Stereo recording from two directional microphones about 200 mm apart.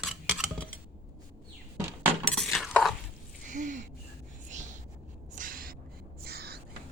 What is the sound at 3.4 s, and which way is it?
Gasp, 40° right (ahead or behind).